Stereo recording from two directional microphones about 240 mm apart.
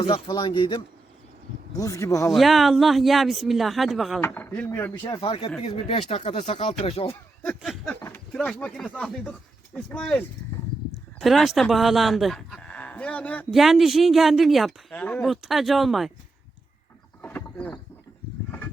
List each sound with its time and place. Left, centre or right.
0.0 s speech: left
2.3 s speech: centre
5.1 s speech: left
7.4 s a sound: centre
8.0 s speech: centre
17.2 s a sound: centre